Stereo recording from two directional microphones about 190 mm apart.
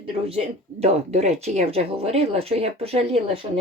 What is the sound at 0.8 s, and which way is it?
Speech, 35° right (ahead or behind).